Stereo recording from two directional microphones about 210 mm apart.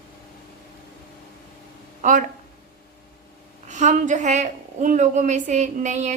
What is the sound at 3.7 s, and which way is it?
A woman's voice, 35° right (ahead or behind).